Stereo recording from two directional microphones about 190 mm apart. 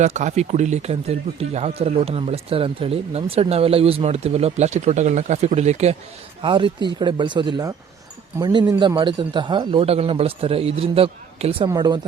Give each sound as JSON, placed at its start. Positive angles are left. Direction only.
{"t": 0.0, "sound": "speech", "side_deg": -40}
{"t": 6.4, "sound": "a man's voice", "side_deg": -25}
{"t": 11.7, "sound": "a man's voice", "side_deg": -20}